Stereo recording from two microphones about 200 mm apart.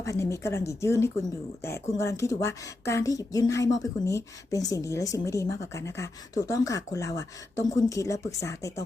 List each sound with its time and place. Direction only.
0.0 s a woman's voice: 15° left (ahead or behind)